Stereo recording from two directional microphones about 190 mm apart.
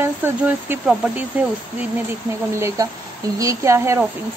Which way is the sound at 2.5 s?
15° right (ahead or behind).